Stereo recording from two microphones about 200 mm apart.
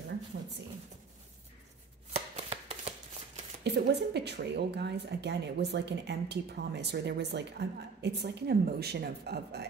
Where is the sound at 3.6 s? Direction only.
60° right (ahead or behind).